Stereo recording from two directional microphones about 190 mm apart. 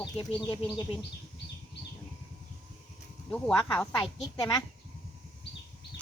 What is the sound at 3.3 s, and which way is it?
Speech, 5° left (ahead or behind).